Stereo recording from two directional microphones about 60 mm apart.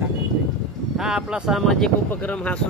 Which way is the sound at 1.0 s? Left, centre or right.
Centre.